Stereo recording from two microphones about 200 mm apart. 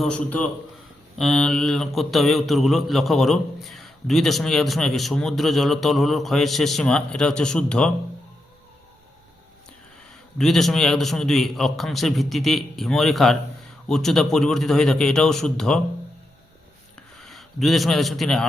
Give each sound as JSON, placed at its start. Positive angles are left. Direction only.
{"t": 0.0, "sound": "a man's voice", "side_deg": 5}
{"t": 10.3, "sound": "a man's voice", "side_deg": 0}
{"t": 17.2, "sound": "a man's voice", "side_deg": 0}